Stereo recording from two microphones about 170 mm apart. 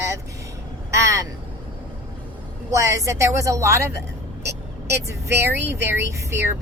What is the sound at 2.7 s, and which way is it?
Speech, 20° right (ahead or behind).